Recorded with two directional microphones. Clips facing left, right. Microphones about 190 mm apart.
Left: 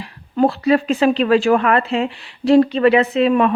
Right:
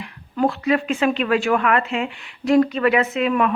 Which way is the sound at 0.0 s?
30° left (ahead or behind).